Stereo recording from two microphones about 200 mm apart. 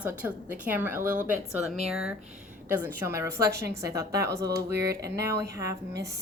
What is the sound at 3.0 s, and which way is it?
A woman's voice, 15° right (ahead or behind).